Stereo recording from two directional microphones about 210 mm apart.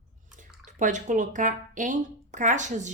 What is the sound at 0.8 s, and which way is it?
Speech, 35° right (ahead or behind).